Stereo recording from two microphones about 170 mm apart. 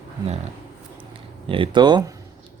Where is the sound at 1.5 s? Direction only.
30° right (ahead or behind).